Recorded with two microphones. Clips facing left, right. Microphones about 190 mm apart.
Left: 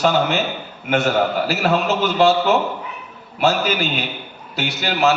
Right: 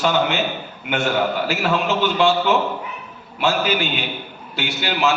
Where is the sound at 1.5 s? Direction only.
40° left (ahead or behind).